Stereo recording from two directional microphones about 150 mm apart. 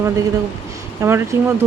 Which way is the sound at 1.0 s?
15° right (ahead or behind).